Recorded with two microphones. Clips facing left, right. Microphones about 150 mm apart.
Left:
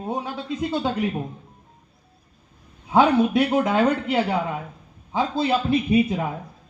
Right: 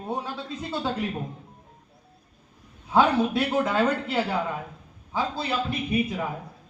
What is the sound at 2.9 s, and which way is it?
A man's voice, 15° left (ahead or behind).